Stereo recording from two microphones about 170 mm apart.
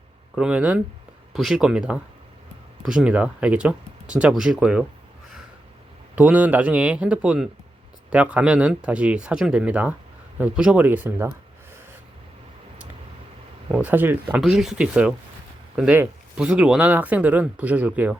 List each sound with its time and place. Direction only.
0.3 s speech: 5° right (ahead or behind)
6.1 s speech: 10° right (ahead or behind)
13.7 s speech: 5° right (ahead or behind)